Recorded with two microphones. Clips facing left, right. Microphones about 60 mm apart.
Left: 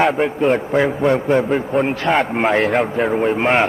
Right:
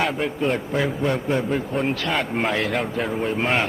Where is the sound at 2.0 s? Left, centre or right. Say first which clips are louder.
Left 7 dB; left.